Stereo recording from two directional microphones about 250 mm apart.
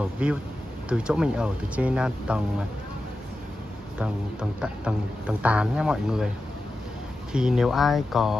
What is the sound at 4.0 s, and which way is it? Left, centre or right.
Speech, centre.